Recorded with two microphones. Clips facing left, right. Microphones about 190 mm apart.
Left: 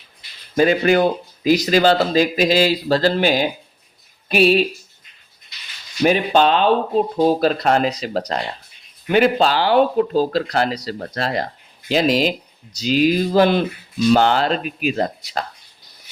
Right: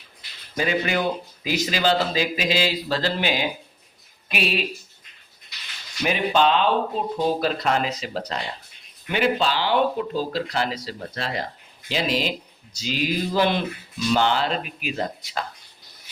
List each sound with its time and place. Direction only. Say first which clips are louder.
0.5 s speech: left 9 dB; 45° left (ahead or behind)
6.0 s speech: left 5 dB; 35° left (ahead or behind)